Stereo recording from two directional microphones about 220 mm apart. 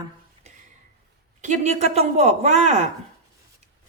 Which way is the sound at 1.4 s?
30° right (ahead or behind).